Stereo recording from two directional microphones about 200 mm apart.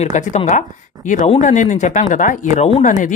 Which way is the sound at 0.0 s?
35° left (ahead or behind).